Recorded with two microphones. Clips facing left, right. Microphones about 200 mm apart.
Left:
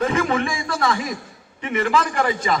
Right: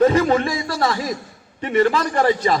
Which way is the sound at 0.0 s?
30° right (ahead or behind).